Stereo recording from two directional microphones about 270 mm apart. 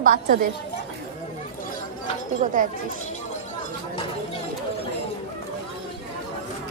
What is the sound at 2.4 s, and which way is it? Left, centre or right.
Speech, right.